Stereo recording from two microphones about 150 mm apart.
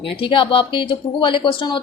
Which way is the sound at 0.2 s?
35° left (ahead or behind).